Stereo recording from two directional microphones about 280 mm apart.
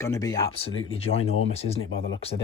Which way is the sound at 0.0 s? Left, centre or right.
Centre.